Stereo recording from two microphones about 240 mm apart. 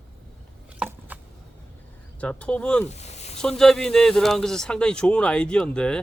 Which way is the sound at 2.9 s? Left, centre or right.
Left.